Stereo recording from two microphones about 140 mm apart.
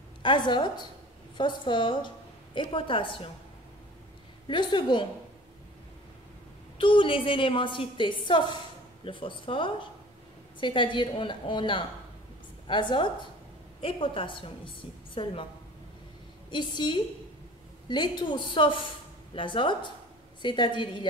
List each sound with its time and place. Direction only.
0.2 s a woman's voice: 35° left (ahead or behind)
4.5 s a woman's voice: 35° left (ahead or behind)
6.8 s a woman's voice: 35° left (ahead or behind)
16.4 s a woman's voice: 35° left (ahead or behind)